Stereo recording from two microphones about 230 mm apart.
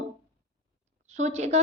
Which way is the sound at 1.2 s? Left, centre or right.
Right.